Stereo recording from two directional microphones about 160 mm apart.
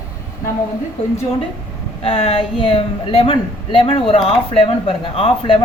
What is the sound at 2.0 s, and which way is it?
Speech, 35° left (ahead or behind).